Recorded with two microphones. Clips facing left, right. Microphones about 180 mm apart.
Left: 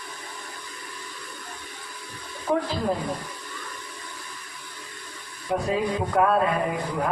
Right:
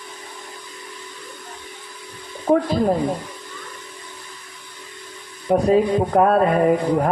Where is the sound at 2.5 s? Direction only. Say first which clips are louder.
Right 7 dB; 35° right (ahead or behind).